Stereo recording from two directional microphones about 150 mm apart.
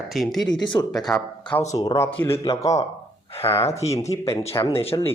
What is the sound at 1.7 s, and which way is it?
Speech, 20° left (ahead or behind).